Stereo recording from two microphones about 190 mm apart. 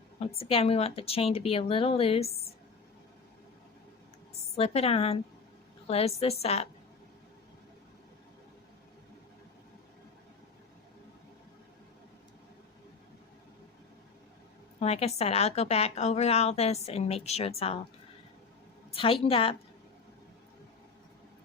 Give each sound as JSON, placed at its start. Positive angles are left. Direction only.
{"t": 0.2, "sound": "a woman's voice", "side_deg": 30}
{"t": 4.5, "sound": "a woman's voice", "side_deg": 30}
{"t": 14.8, "sound": "a woman's voice", "side_deg": 35}
{"t": 18.9, "sound": "a woman's voice", "side_deg": 30}